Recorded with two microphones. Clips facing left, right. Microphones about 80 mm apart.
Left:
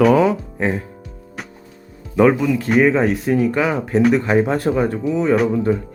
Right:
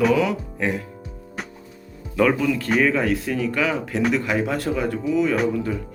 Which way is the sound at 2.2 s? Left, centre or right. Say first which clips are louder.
Left 5 dB; left.